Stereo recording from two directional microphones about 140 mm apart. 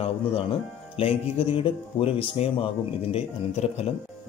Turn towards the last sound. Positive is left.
turn(degrees=50)  # may be behind; listen again after turning